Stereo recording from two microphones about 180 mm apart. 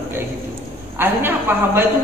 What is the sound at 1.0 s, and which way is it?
Speech, 10° right (ahead or behind).